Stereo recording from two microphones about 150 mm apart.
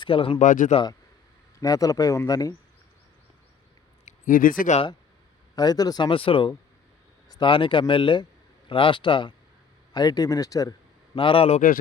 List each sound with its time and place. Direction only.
0.0 s a man's voice: 35° left (ahead or behind)
0.3 s speech: 60° left (ahead or behind)
1.5 s speech: 25° left (ahead or behind)
4.0 s speech: 65° left (ahead or behind)
5.5 s speech: 25° left (ahead or behind)
11.1 s a man's voice: 35° left (ahead or behind)